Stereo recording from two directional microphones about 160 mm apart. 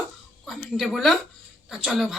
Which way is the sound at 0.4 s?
Centre (ahead or behind).